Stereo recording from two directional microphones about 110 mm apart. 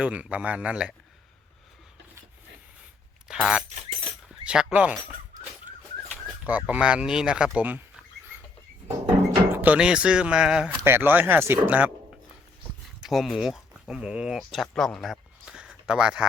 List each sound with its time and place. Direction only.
0.0 s speech: 10° right (ahead or behind)
3.2 s speech: 10° right (ahead or behind)
6.4 s speech: 15° right (ahead or behind)
9.5 s speech: 15° right (ahead or behind)
10.8 s speech: 20° right (ahead or behind)
13.0 s speech: centre (ahead or behind)